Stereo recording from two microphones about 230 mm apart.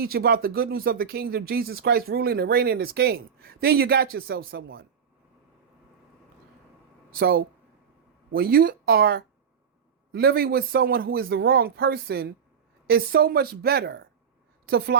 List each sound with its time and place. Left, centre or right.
0.0 s speech: right
7.1 s a woman's voice: right